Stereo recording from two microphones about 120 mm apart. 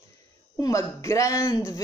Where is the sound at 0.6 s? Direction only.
25° left (ahead or behind).